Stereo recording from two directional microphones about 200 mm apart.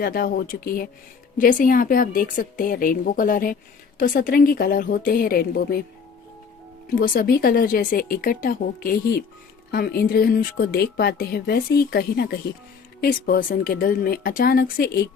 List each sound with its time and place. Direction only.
0.0 s speech: 45° left (ahead or behind)
6.9 s speech: 45° left (ahead or behind)